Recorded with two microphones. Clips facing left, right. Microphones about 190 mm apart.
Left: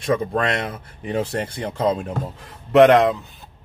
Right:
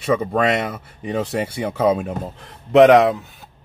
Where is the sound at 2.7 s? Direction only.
Centre (ahead or behind).